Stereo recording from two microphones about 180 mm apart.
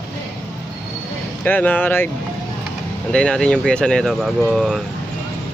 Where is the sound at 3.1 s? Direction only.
5° left (ahead or behind).